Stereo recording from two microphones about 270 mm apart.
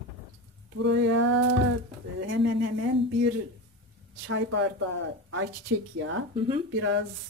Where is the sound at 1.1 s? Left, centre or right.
Right.